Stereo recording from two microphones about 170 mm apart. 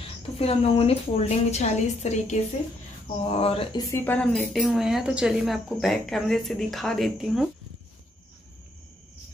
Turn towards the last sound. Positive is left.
turn(degrees=0)  # may be behind; listen again after turning